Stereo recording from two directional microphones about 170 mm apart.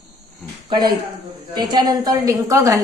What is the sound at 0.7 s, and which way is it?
A woman's voice, 25° right (ahead or behind).